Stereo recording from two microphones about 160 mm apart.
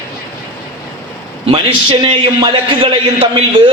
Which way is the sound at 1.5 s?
30° right (ahead or behind).